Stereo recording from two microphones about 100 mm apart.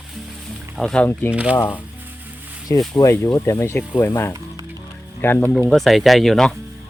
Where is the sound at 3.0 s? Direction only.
25° left (ahead or behind).